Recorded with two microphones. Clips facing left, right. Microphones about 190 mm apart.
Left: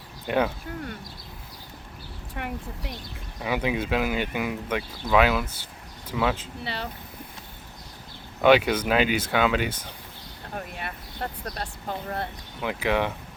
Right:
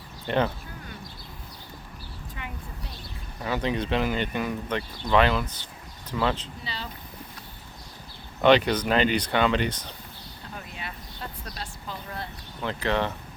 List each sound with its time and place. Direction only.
0.3 s speech: 10° left (ahead or behind)
2.3 s speech: 65° left (ahead or behind)
3.4 s speech: 10° left (ahead or behind)
8.4 s speech: 5° left (ahead or behind)
10.5 s vehicle: 55° left (ahead or behind)
12.6 s speech: 10° left (ahead or behind)